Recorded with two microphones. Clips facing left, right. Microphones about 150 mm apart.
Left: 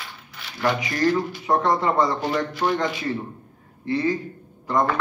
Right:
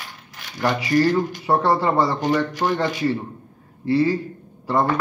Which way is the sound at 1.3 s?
30° right (ahead or behind).